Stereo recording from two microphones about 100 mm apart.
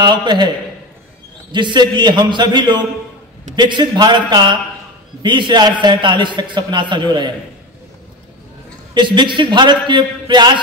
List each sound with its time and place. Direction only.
0.0 s a man's voice: 50° right (ahead or behind)
1.5 s a man's voice: 50° right (ahead or behind)
8.9 s a man's voice: 50° right (ahead or behind)